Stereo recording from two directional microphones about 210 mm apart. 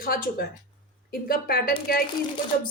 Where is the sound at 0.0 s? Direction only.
45° left (ahead or behind).